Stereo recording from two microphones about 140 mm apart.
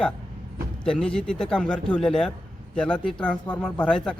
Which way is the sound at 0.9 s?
5° left (ahead or behind).